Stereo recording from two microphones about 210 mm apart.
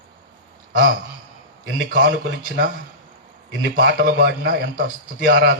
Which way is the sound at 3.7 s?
45° right (ahead or behind).